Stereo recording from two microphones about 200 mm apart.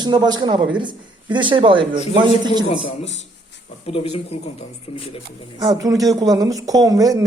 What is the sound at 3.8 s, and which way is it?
Speech, 30° left (ahead or behind).